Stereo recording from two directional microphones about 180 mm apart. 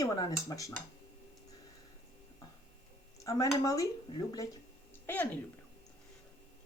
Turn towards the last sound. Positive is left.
turn(degrees=10)  # may be behind; listen again after turning